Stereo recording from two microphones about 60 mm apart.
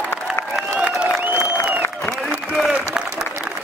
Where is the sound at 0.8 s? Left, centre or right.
Centre.